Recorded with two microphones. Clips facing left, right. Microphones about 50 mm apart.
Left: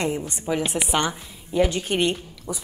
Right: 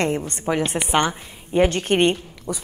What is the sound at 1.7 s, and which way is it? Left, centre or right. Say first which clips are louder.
Speech: right 5 dB; right.